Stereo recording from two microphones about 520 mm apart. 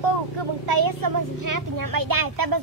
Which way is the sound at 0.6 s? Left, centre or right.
Right.